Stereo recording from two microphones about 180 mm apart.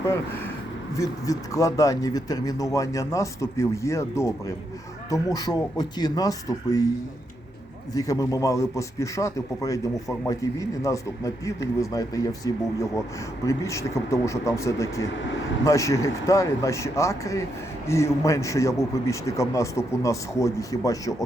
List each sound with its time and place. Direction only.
0.9 s a man's voice: 20° left (ahead or behind)
7.9 s a man's voice: 20° left (ahead or behind)